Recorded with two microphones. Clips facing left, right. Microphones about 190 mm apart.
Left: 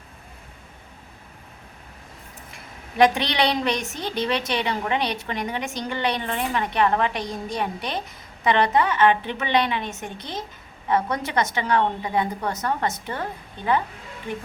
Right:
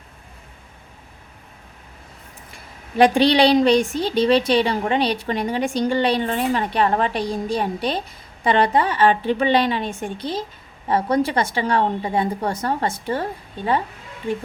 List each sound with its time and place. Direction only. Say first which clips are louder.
3.0 s a woman's voice: right 5 dB; 30° right (ahead or behind)